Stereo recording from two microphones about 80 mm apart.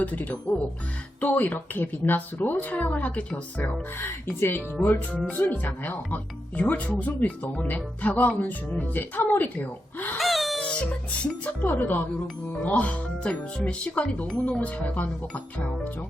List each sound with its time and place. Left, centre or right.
0.0 s speech: centre
4.0 s speech: left
10.2 s music: centre
11.2 s speech: left